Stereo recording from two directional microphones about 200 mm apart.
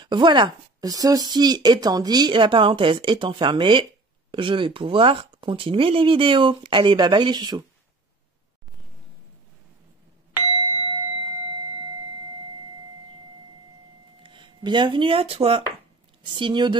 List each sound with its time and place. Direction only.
0.0 s speech: 25° right (ahead or behind)
10.9 s clock: 20° right (ahead or behind)
14.2 s speech: 25° right (ahead or behind)